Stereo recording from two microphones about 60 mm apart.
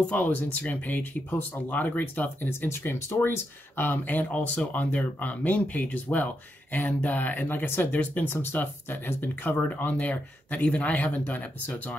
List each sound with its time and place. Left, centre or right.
0.0 s speech: left